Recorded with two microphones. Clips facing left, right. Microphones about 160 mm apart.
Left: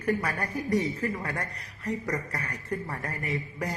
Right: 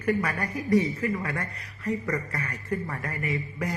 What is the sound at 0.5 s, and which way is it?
Speech, centre (ahead or behind).